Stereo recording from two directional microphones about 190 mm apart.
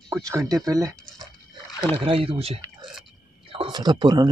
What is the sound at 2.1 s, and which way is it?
A man's voice, 30° right (ahead or behind).